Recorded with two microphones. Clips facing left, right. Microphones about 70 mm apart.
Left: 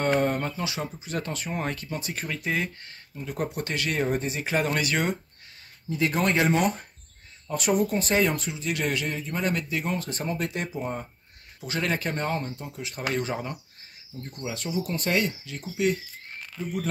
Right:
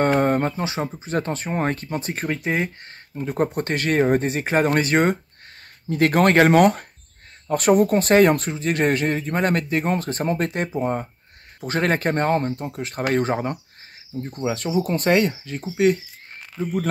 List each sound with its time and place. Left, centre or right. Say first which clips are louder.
0.0 s speech: right 6 dB; right
3.2 s speech: right 8 dB; right
5.9 s speech: right 8 dB; right
7.4 s speech: right 8 dB; right
15.8 s a sound: right 7 dB; right